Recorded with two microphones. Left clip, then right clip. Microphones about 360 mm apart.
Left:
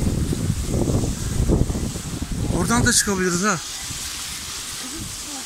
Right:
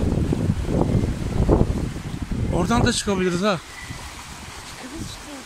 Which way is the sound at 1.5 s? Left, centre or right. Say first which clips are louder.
Right 4 dB; right.